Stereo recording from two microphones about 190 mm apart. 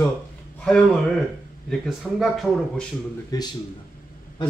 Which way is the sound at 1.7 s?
Centre (ahead or behind).